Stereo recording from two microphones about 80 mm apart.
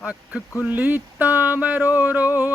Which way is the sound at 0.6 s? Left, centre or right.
Centre.